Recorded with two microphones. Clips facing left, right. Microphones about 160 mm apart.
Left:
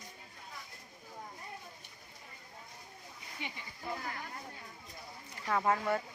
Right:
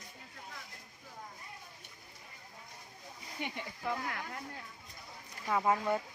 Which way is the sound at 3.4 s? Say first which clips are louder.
Right 4 dB; 50° right (ahead or behind).